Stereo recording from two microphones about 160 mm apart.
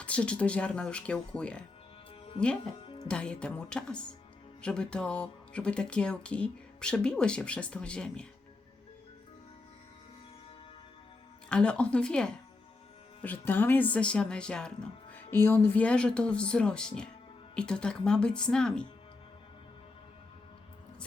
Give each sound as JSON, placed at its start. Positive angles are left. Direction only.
{"t": 0.0, "sound": "speech", "side_deg": 5}
{"t": 2.8, "sound": "music", "side_deg": 35}
{"t": 3.1, "sound": "speech", "side_deg": 5}
{"t": 11.4, "sound": "speech", "side_deg": 5}